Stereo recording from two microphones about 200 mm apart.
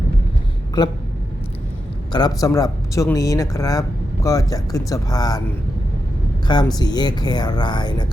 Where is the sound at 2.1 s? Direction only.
20° left (ahead or behind).